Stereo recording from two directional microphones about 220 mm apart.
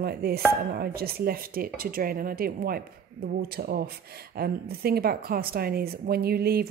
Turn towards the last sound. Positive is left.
turn(degrees=-45)  # may be behind; listen again after turning